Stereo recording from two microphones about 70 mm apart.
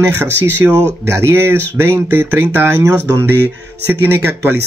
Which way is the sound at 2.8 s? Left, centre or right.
Right.